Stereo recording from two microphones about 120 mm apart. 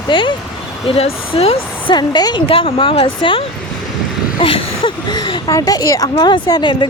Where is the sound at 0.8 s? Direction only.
55° left (ahead or behind).